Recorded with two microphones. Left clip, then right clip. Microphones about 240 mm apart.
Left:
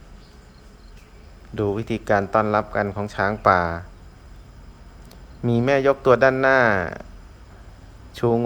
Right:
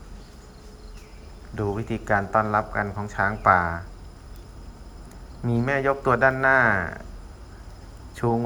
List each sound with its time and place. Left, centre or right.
1.5 s a man's voice: left
5.5 s a man's voice: left